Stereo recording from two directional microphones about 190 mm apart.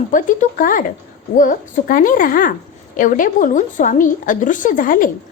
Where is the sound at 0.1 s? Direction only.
45° left (ahead or behind).